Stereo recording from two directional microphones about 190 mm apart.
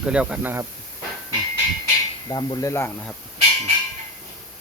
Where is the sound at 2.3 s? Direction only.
20° left (ahead or behind).